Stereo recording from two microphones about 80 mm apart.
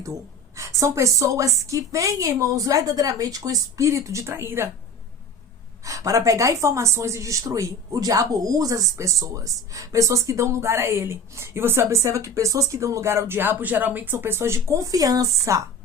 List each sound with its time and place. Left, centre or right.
0.5 s a woman's voice: right
5.8 s a woman's voice: right